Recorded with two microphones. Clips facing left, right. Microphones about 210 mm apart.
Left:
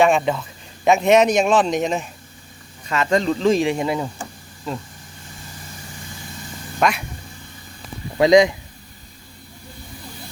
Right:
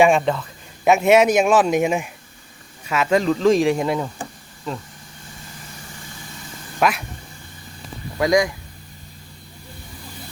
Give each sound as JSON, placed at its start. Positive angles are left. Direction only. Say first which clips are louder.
{"t": 0.0, "sound": "a man's voice", "louder": "right 1 dB", "side_deg": -5}
{"t": 6.7, "sound": "speech", "louder": "even", "side_deg": -5}
{"t": 8.2, "sound": "speech", "louder": "left 5 dB", "side_deg": 20}